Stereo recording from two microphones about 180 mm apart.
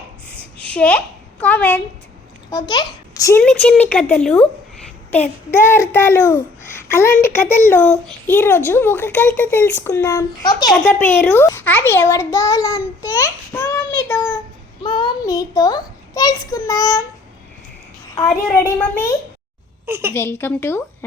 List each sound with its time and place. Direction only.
0.3 s a sound: 5° left (ahead or behind)
2.5 s a child's voice: 20° left (ahead or behind)
3.4 s a child's voice: 5° left (ahead or behind)
5.5 s a child's voice: 15° left (ahead or behind)
13.5 s child singing: 10° left (ahead or behind)
14.8 s a child's voice: 25° left (ahead or behind)
18.5 s a child's voice: 15° left (ahead or behind)
19.8 s a child's voice: 15° right (ahead or behind)
20.1 s a child's voice: 15° left (ahead or behind)